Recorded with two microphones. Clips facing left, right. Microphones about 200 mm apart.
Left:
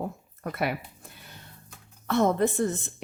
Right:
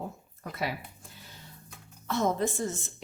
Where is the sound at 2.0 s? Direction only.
60° left (ahead or behind).